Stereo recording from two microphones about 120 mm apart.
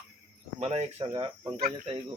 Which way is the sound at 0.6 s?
60° right (ahead or behind).